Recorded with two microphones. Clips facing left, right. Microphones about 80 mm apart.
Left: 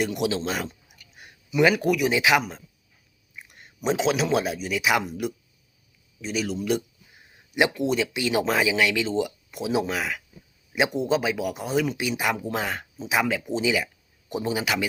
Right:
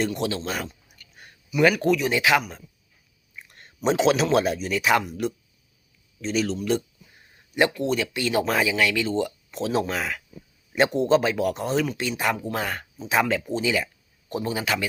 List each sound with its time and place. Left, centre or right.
0.0 s speech: centre
0.9 s a sound: centre
3.3 s speech: centre